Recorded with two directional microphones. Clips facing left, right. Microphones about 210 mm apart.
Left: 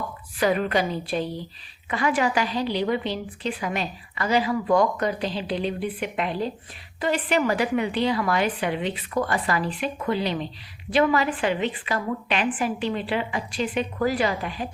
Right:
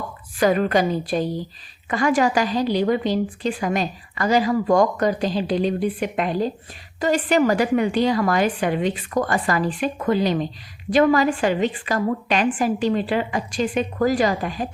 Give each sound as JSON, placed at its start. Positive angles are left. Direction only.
{"t": 0.3, "sound": "a woman's voice", "side_deg": -45}